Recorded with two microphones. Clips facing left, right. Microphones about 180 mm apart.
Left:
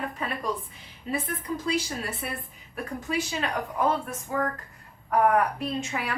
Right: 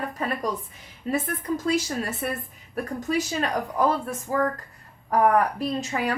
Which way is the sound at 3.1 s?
40° right (ahead or behind).